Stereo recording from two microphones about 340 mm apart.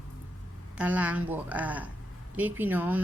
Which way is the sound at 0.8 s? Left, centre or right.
Centre.